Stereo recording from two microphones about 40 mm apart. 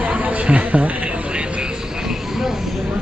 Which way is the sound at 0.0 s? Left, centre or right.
Right.